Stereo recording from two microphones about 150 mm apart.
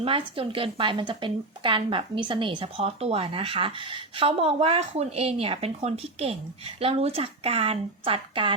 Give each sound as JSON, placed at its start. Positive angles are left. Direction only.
{"t": 0.0, "sound": "a woman's voice", "side_deg": -35}